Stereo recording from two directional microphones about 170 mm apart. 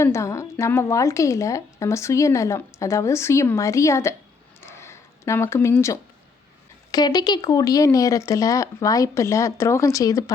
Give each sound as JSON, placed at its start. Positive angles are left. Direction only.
{"t": 0.0, "sound": "a woman's voice", "side_deg": 15}
{"t": 4.6, "sound": "a sound", "side_deg": 15}
{"t": 6.9, "sound": "speech", "side_deg": 25}